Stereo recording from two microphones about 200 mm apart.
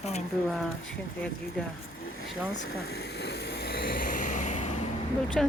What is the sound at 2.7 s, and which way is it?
Vehicle, 50° left (ahead or behind).